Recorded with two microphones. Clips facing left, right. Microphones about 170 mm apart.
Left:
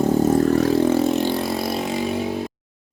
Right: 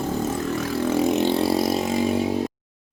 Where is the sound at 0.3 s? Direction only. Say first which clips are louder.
Left 9 dB; 40° left (ahead or behind).